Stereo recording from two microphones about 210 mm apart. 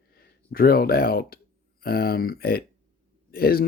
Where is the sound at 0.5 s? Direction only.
45° left (ahead or behind).